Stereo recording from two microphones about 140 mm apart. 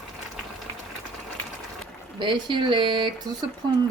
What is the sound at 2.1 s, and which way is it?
Speech, 35° right (ahead or behind).